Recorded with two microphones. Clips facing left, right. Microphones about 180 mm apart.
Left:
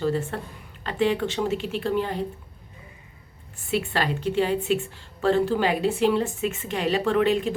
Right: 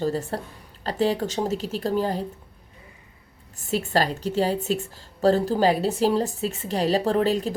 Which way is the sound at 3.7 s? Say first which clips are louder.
Right 2 dB; 40° right (ahead or behind).